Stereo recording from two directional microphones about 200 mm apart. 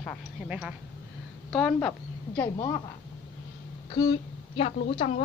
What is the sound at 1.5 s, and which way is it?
Speech, 5° left (ahead or behind).